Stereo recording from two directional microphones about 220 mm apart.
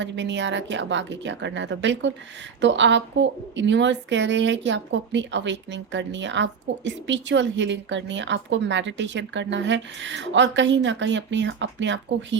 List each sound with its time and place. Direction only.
0.0 s a woman's voice: 55° right (ahead or behind)